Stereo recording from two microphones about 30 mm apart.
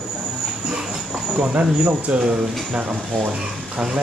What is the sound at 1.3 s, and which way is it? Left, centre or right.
Speech, right.